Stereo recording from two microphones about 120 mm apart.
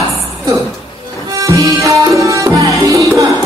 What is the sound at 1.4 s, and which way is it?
Tabla, 30° right (ahead or behind).